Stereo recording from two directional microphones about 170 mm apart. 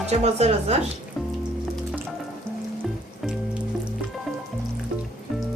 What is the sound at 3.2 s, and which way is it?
Music, 5° right (ahead or behind).